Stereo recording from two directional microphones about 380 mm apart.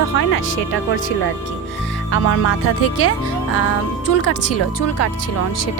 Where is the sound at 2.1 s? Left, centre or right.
Left.